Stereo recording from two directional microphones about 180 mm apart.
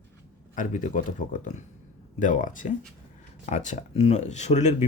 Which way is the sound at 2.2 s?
45° left (ahead or behind).